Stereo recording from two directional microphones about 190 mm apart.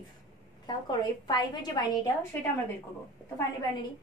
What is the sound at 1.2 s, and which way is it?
Speech, 20° left (ahead or behind).